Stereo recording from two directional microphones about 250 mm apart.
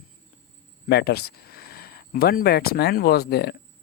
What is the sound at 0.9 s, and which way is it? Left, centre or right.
Speech, left.